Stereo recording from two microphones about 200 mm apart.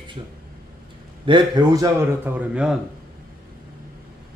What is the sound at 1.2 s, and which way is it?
A man's voice, 20° right (ahead or behind).